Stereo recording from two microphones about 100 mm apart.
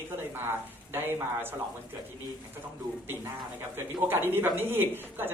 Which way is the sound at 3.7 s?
20° right (ahead or behind).